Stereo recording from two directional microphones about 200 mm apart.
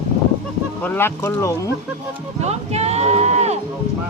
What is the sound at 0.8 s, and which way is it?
Speech, 10° left (ahead or behind).